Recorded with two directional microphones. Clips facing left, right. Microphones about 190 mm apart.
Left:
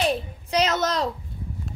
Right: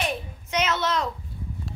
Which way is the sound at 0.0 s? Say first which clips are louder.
Left 5 dB; 35° left (ahead or behind).